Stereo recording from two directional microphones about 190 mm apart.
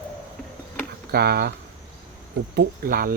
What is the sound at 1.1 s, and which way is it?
Speech, 60° right (ahead or behind).